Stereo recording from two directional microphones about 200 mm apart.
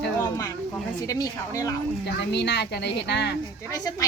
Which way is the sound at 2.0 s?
55° left (ahead or behind).